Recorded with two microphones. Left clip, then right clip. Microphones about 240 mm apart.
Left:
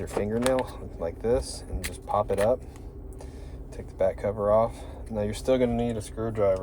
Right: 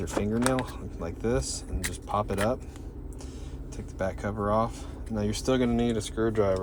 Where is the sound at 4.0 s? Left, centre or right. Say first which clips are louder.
Left 5 dB; right.